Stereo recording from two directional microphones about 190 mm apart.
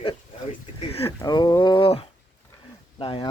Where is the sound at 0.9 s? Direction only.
30° left (ahead or behind).